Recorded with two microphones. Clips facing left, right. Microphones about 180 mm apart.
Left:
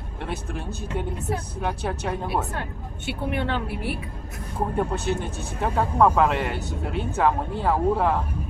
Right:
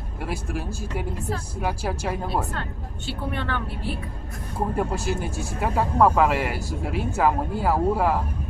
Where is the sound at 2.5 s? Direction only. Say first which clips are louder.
Even; 20° left (ahead or behind).